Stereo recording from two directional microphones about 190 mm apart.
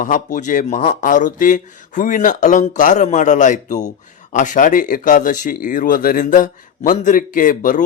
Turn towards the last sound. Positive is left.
turn(degrees=45)  # may be behind; listen again after turning